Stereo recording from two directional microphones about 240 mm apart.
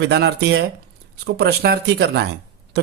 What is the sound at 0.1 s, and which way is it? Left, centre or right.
Speech, right.